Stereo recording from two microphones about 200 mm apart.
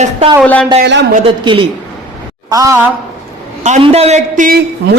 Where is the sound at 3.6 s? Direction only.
30° right (ahead or behind).